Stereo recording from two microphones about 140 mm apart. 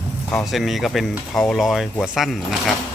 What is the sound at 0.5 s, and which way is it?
Speech, centre (ahead or behind).